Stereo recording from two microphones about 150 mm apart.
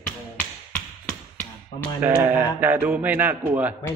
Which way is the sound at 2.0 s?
10° right (ahead or behind).